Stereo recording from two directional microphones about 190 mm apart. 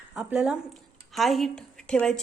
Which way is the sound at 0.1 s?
5° right (ahead or behind).